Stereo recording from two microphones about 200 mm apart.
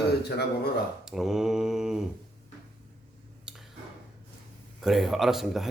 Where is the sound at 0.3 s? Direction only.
55° left (ahead or behind).